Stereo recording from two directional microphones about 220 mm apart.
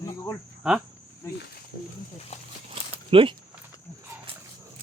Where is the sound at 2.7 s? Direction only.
25° right (ahead or behind).